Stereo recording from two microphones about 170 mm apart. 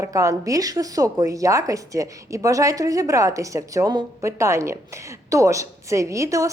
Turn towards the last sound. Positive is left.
turn(degrees=-20)  # may be behind; listen again after turning